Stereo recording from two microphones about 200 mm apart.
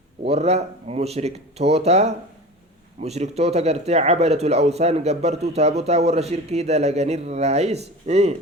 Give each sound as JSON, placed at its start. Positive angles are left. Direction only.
{"t": 0.3, "sound": "speech", "side_deg": -30}